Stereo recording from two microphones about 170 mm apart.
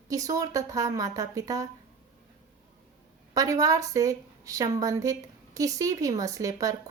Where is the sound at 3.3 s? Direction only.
20° right (ahead or behind).